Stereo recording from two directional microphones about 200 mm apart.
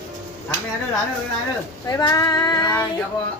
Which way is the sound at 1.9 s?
15° left (ahead or behind).